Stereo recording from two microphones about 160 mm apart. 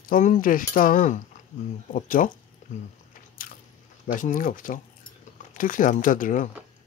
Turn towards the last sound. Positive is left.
turn(degrees=55)  # may be behind; listen again after turning